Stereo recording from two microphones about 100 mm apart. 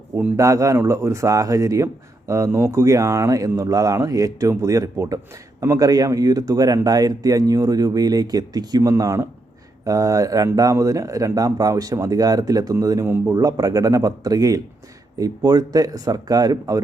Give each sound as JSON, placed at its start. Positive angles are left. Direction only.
{"t": 0.3, "sound": "speech", "side_deg": -30}
{"t": 13.1, "sound": "speech", "side_deg": -25}
{"t": 13.3, "sound": "speech", "side_deg": -40}